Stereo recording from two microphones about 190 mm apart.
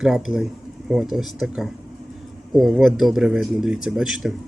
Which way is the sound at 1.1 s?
Centre (ahead or behind).